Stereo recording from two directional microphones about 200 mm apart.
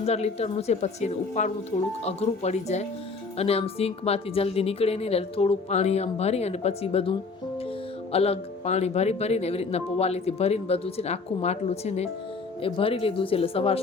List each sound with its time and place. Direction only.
0.0 s speech: 30° left (ahead or behind)